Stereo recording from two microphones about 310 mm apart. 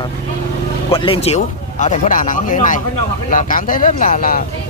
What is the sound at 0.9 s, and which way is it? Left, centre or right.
Speech, centre.